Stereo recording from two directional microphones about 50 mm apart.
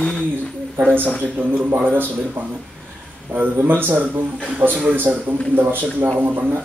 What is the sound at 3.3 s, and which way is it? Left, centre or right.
A man's voice, right.